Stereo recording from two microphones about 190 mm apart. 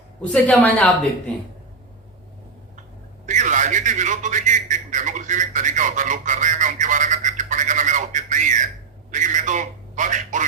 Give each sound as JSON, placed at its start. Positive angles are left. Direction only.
{"t": 0.2, "sound": "a woman's voice", "side_deg": 5}
{"t": 3.2, "sound": "a man's voice", "side_deg": -40}